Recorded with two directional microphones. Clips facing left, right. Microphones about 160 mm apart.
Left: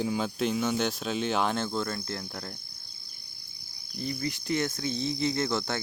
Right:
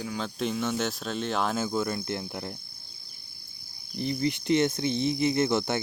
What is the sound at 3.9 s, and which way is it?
Cricket, 25° right (ahead or behind).